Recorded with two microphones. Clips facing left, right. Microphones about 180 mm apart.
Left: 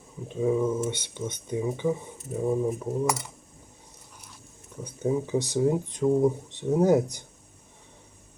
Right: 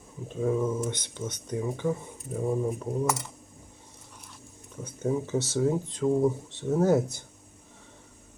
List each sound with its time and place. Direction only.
0.3 s speech: 5° left (ahead or behind)
4.8 s speech: 15° left (ahead or behind)